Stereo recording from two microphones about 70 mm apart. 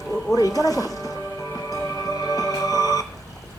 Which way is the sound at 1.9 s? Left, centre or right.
Left.